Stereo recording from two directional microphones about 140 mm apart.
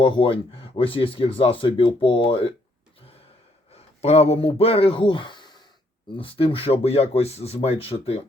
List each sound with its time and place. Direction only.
0.0 s speech: 35° left (ahead or behind)
3.7 s speech: 45° left (ahead or behind)